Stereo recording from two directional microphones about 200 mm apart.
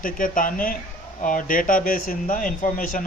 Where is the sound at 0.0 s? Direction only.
45° left (ahead or behind).